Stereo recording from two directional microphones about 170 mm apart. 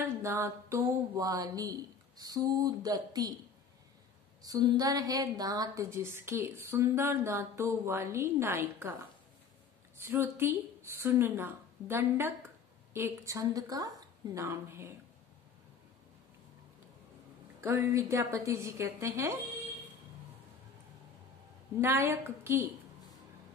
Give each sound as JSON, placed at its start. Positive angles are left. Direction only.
{"t": 0.0, "sound": "a sound", "side_deg": -15}
{"t": 4.4, "sound": "a woman's voice", "side_deg": -20}
{"t": 10.0, "sound": "a woman's voice", "side_deg": -15}
{"t": 17.6, "sound": "a woman's voice", "side_deg": -15}
{"t": 21.8, "sound": "a woman's voice", "side_deg": -15}